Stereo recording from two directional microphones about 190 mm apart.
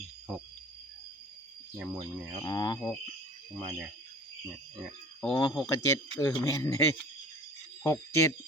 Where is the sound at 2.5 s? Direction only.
20° left (ahead or behind).